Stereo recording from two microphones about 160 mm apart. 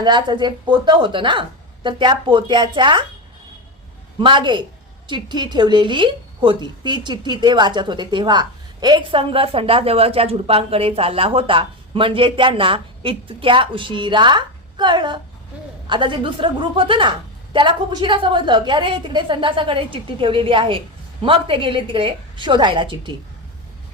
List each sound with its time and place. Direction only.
0.0 s a woman's voice: 25° right (ahead or behind)
4.2 s a woman's voice: 30° right (ahead or behind)